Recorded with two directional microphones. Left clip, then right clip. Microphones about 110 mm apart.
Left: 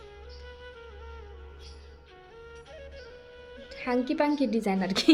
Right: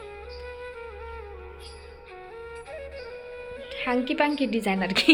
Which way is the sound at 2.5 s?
35° right (ahead or behind).